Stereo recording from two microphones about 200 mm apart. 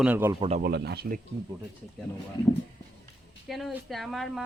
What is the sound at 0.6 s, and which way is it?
Speech, 55° right (ahead or behind).